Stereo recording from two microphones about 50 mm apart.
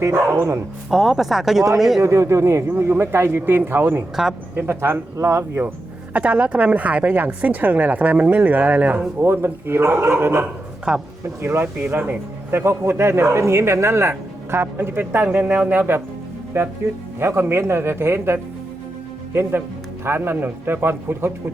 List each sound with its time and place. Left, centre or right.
0.0 s speech: right
0.9 s speech: centre
2.0 s a man's voice: right
2.6 s speech: right
4.1 s speech: centre
4.5 s speech: right
6.1 s speech: right
9.2 s speech: right
10.9 s speech: centre
11.4 s speech: right
15.7 s speech: right
16.5 s speech: right